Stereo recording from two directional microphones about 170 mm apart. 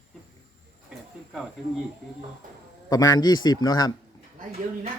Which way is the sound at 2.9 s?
20° left (ahead or behind).